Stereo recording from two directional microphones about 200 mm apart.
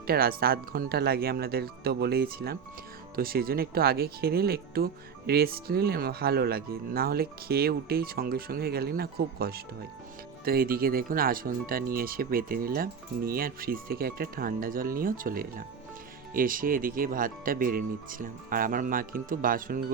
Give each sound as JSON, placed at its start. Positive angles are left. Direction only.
{"t": 0.1, "sound": "speech", "side_deg": -50}